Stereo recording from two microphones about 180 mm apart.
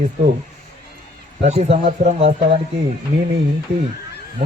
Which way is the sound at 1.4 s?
35° right (ahead or behind).